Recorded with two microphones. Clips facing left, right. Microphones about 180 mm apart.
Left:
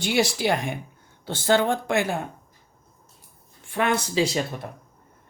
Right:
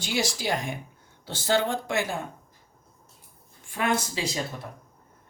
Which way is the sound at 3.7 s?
70° left (ahead or behind).